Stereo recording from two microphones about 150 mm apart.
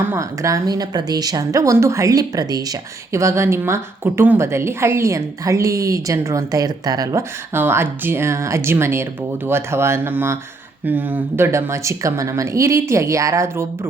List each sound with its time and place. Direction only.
0.0 s a woman's voice: 15° right (ahead or behind)